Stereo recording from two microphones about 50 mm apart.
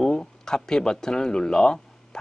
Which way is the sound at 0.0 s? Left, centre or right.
Centre.